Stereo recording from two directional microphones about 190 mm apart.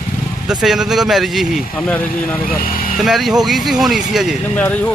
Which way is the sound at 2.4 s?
50° left (ahead or behind).